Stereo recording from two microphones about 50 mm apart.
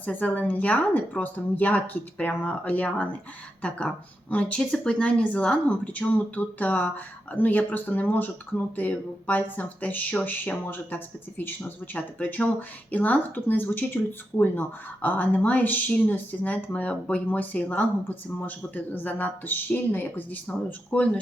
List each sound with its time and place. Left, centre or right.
0.0 s speech: left
3.6 s speech: left